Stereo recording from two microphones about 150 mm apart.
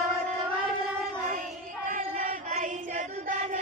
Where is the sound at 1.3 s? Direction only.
60° right (ahead or behind).